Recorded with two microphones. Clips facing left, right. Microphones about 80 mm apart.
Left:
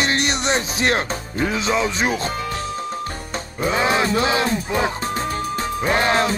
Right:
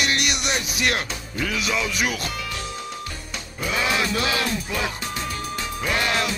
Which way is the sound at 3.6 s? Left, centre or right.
Left.